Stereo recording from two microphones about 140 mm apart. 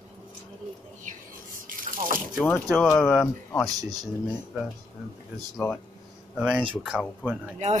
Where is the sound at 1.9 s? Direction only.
75° right (ahead or behind).